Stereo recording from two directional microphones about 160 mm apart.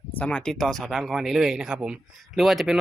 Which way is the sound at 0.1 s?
10° left (ahead or behind).